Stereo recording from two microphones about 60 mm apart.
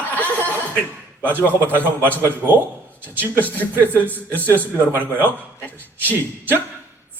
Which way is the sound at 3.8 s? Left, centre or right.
Left.